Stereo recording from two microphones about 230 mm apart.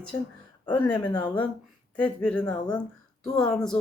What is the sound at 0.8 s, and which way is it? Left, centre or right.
Speech, centre.